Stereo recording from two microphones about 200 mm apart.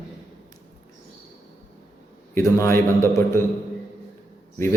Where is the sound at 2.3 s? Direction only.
15° left (ahead or behind).